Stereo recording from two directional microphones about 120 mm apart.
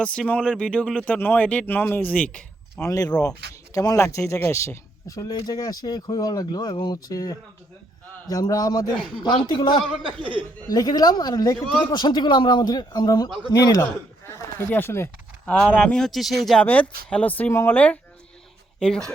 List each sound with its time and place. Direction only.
0.0 s speech: 10° left (ahead or behind)
2.8 s speech: 30° left (ahead or behind)
10.1 s speech: 45° right (ahead or behind)
10.7 s speech: 35° left (ahead or behind)
15.5 s speech: 10° left (ahead or behind)
16.6 s speech: 10° left (ahead or behind)